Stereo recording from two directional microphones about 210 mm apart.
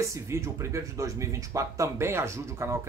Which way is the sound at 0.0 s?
15° right (ahead or behind).